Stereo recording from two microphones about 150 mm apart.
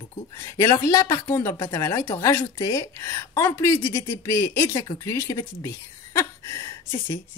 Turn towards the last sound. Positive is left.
turn(degrees=20)  # may be behind; listen again after turning